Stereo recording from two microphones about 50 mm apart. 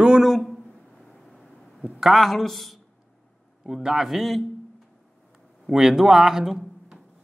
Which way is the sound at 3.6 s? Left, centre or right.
Centre.